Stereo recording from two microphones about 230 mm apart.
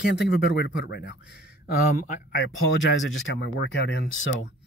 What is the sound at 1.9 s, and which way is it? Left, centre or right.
Speech, left.